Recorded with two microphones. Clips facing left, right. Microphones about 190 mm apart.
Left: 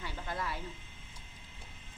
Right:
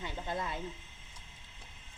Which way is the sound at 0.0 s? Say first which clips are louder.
Right 2 dB; 20° right (ahead or behind).